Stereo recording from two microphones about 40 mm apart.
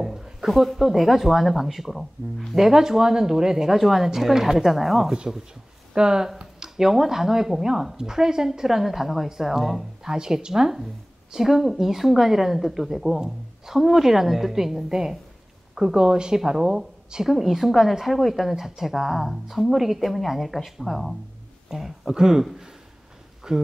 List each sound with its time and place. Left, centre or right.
0.0 s a sound: centre
0.5 s speech: centre
5.9 s speech: centre
21.6 s a woman's voice: centre